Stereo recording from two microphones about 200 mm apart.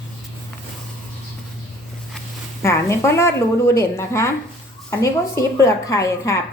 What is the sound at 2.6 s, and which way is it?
A woman's voice, 15° left (ahead or behind).